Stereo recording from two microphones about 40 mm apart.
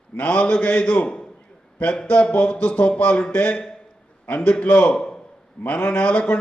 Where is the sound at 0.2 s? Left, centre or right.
Left.